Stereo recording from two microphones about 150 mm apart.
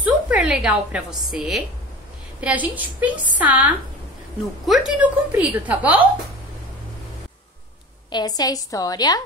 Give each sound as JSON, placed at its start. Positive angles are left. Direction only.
{"t": 0.0, "sound": "a sound", "side_deg": -10}
{"t": 1.3, "sound": "a woman's voice", "side_deg": -5}
{"t": 8.1, "sound": "a woman's voice", "side_deg": 25}